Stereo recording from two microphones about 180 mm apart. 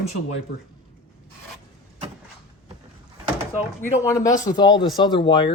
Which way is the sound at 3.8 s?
20° left (ahead or behind).